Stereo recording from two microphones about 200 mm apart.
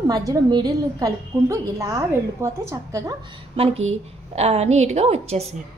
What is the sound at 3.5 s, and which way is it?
A woman's voice, 30° right (ahead or behind).